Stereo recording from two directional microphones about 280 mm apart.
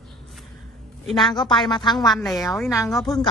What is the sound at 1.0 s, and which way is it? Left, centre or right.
Speech, centre.